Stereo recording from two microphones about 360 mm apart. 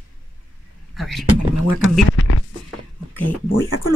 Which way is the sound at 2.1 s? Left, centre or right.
Left.